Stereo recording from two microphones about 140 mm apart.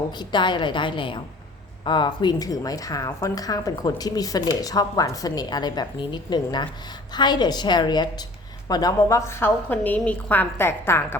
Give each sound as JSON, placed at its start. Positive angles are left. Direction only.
{"t": 0.3, "sound": "a woman's voice", "side_deg": 35}